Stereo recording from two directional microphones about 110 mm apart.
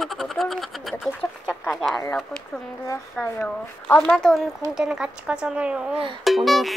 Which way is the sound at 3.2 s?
10° left (ahead or behind).